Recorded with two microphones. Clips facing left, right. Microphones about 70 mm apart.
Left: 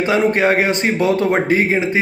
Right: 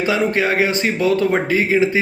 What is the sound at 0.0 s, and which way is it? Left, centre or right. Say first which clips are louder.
Speech: left 3 dB; left.